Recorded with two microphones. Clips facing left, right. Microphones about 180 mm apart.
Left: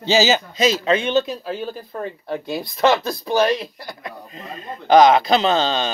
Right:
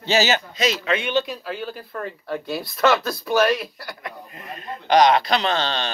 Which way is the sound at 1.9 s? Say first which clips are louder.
Left 1 dB; 25° left (ahead or behind).